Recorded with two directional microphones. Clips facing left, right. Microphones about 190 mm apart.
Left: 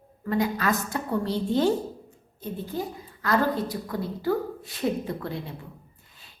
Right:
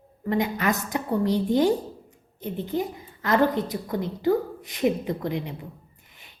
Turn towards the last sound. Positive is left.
turn(degrees=-15)  # may be behind; listen again after turning